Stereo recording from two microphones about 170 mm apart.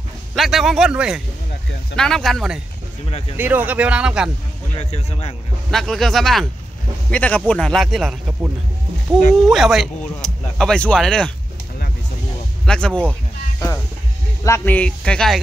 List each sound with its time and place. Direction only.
0.3 s a man's voice: centre (ahead or behind)
3.1 s speech: 35° left (ahead or behind)
3.3 s speech: 10° right (ahead or behind)
4.7 s speech: 40° left (ahead or behind)
5.7 s a man's voice: centre (ahead or behind)
9.5 s speech: centre (ahead or behind)
12.6 s a man's voice: 5° left (ahead or behind)
14.4 s a man's voice: 15° left (ahead or behind)